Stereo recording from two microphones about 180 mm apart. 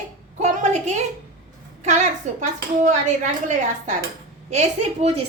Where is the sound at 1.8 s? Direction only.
40° right (ahead or behind).